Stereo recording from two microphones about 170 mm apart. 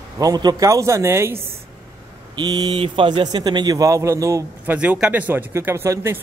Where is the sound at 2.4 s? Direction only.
25° right (ahead or behind).